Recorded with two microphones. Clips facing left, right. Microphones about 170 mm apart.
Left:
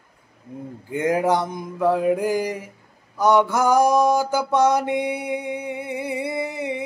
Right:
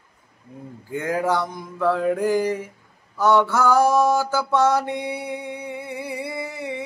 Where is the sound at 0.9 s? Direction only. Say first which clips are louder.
Left 3 dB; 20° left (ahead or behind).